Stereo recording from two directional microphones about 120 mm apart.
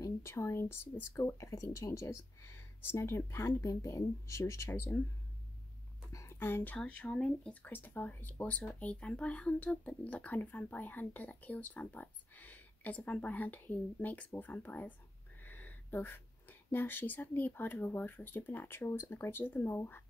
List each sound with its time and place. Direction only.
0.0 s speech: 20° left (ahead or behind)
6.1 s speech: 20° left (ahead or behind)